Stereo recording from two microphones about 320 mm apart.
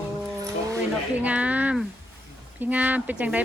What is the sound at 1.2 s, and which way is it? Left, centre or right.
Speech, centre.